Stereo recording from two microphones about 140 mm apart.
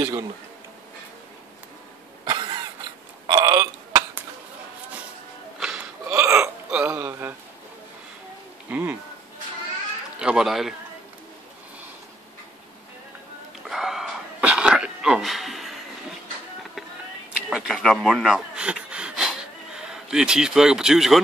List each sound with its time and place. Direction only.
2.2 s cough: 30° right (ahead or behind)
3.3 s burping: 30° right (ahead or behind)
5.6 s hiccup: 5° right (ahead or behind)
8.6 s a sound: 15° right (ahead or behind)
10.1 s speech: 5° right (ahead or behind)
13.7 s a sound: centre (ahead or behind)
17.5 s rub: 5° right (ahead or behind)
19.8 s speech: 5° right (ahead or behind)